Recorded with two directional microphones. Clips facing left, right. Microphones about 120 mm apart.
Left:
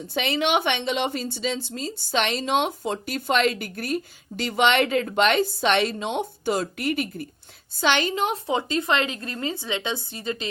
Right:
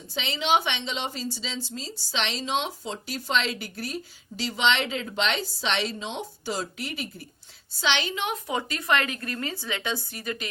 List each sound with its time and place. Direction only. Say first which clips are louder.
0.1 s a woman's voice: left 2 dB; 60° left (ahead or behind); by 10.5 s 25° left (ahead or behind)